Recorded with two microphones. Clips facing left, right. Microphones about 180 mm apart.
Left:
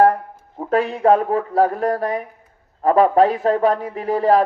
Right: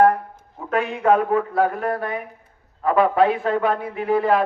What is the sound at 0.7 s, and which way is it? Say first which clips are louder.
A man's voice: left 3 dB; 35° left (ahead or behind).